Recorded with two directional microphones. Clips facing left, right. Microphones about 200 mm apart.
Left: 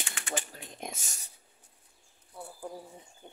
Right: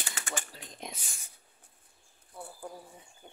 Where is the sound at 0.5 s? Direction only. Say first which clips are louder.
Left 2 dB; 50° left (ahead or behind).